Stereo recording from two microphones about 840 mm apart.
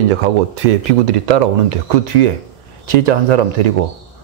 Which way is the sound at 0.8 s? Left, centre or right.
Right.